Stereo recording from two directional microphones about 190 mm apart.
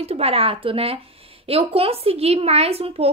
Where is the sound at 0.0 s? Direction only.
30° right (ahead or behind).